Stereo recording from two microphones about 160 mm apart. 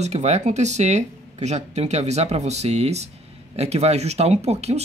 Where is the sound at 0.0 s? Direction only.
45° right (ahead or behind).